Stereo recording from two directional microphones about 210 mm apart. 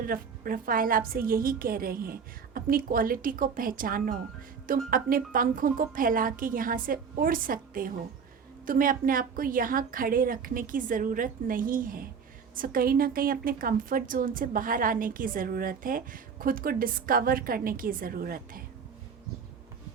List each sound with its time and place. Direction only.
0.0 s a woman's voice: 45° right (ahead or behind)